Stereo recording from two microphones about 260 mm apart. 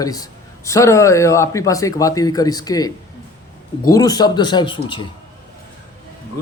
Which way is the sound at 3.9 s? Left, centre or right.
Centre.